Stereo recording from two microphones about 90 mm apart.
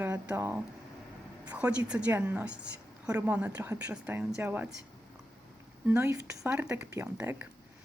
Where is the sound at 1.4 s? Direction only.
15° right (ahead or behind).